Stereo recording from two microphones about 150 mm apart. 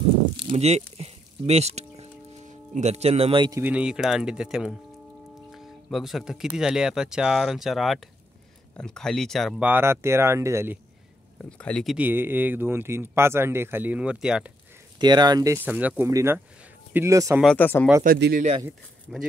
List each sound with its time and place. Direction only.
0.5 s speech: 45° right (ahead or behind)
0.9 s music: 45° right (ahead or behind)
3.5 s speech: 10° right (ahead or behind)
9.6 s speech: 15° right (ahead or behind)
11.5 s speech: 5° left (ahead or behind)
12.0 s speech: 15° right (ahead or behind)
15.0 s speech: 30° right (ahead or behind)
17.6 s speech: 15° left (ahead or behind)
18.0 s speech: 75° right (ahead or behind)
19.1 s speech: 5° right (ahead or behind)